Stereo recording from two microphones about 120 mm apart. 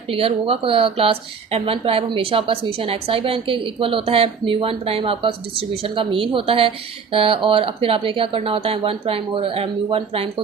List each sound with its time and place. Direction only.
0.1 s speech: 50° right (ahead or behind)